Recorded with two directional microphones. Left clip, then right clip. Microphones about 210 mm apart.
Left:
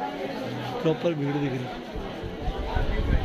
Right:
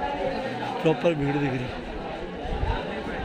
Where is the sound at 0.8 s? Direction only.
10° right (ahead or behind).